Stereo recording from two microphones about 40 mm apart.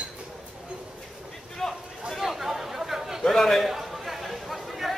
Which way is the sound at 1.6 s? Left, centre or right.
Centre.